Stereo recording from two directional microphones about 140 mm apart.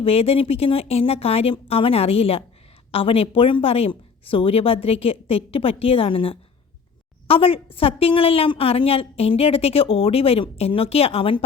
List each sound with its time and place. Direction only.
0.0 s a woman's voice: 45° left (ahead or behind)